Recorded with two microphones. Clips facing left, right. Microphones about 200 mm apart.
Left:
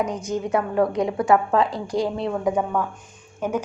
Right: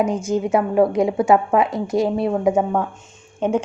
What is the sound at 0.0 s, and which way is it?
A woman's voice, 25° right (ahead or behind).